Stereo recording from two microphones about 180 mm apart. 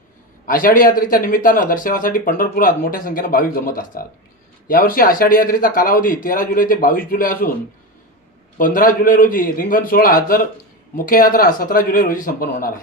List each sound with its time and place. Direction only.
0.4 s speech: 50° left (ahead or behind)
8.5 s speech: 50° left (ahead or behind)